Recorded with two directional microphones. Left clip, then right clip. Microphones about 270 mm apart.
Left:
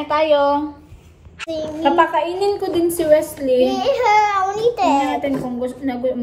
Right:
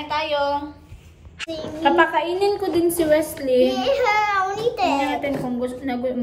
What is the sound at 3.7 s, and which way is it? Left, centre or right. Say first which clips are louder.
A child's voice: left 4 dB; left.